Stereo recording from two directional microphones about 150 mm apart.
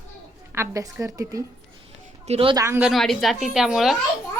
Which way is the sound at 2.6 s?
15° right (ahead or behind).